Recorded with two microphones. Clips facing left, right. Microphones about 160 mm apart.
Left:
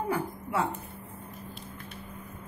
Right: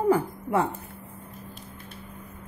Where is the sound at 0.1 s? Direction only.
50° right (ahead or behind).